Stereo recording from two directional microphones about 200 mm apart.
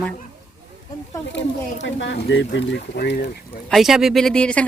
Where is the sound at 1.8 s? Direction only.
60° left (ahead or behind).